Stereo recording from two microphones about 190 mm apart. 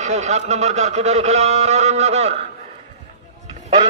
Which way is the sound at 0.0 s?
35° right (ahead or behind).